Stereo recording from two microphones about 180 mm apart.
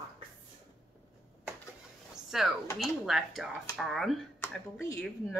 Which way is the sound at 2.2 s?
Centre (ahead or behind).